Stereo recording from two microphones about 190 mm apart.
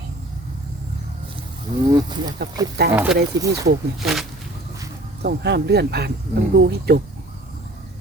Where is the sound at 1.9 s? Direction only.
20° right (ahead or behind).